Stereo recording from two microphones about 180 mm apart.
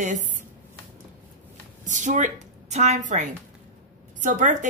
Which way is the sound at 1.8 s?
45° right (ahead or behind).